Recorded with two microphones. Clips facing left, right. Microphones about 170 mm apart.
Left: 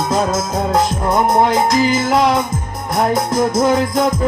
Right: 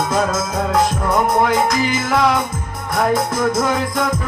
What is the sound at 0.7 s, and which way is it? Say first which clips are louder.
Music: left 1 dB; 35° left (ahead or behind).